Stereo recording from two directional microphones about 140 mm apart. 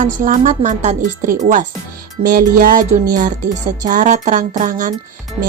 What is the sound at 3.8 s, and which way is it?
A woman's voice, 65° right (ahead or behind).